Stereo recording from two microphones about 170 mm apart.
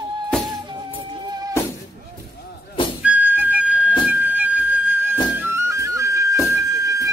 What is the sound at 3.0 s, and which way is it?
Music, 10° right (ahead or behind).